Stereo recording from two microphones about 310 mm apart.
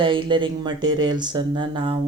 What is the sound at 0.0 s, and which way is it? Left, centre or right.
Speech, centre.